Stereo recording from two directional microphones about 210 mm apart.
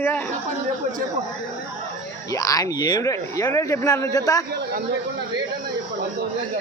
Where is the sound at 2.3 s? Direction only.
15° left (ahead or behind).